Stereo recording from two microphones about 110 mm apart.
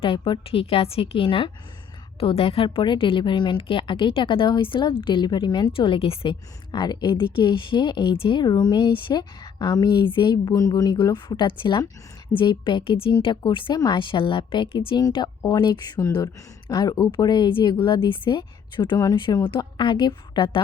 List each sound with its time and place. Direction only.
0.0 s a woman's voice: 55° left (ahead or behind)
5.7 s speech: 55° left (ahead or behind)
6.7 s a woman's voice: 40° left (ahead or behind)
15.4 s speech: 40° left (ahead or behind)